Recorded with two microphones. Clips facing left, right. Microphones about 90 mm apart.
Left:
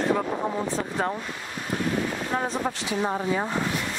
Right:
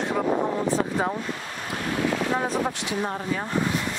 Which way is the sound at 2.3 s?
Centre (ahead or behind).